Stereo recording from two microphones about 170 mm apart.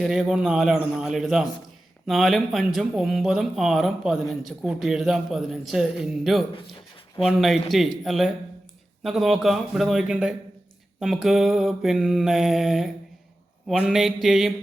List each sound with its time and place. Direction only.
0.0 s speech: 5° right (ahead or behind)
6.5 s speech: 30° left (ahead or behind)
7.2 s speech: centre (ahead or behind)